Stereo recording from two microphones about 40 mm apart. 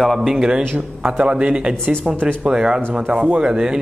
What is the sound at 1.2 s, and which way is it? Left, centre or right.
Speech, right.